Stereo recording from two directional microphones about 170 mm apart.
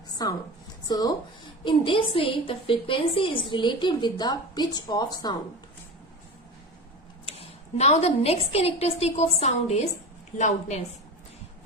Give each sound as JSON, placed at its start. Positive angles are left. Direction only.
{"t": 0.2, "sound": "a woman's voice", "side_deg": 25}
{"t": 7.3, "sound": "a woman's voice", "side_deg": 40}